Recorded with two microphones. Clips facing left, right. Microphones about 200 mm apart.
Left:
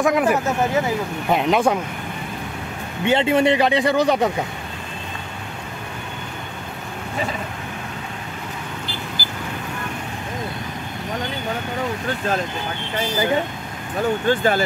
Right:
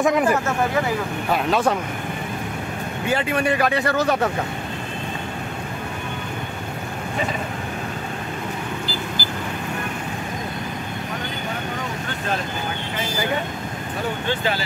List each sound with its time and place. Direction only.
0.0 s speech: centre (ahead or behind)
1.3 s speech: 15° left (ahead or behind)
3.1 s speech: 25° left (ahead or behind)
14.2 s speech: 45° left (ahead or behind)